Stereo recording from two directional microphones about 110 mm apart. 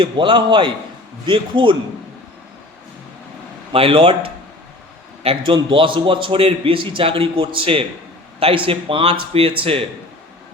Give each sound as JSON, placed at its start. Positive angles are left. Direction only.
{"t": 0.0, "sound": "a man's voice", "side_deg": -50}
{"t": 3.7, "sound": "speech", "side_deg": -55}
{"t": 5.5, "sound": "a man's voice", "side_deg": -50}